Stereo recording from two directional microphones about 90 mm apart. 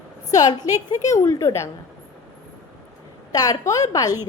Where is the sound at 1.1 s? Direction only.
35° left (ahead or behind).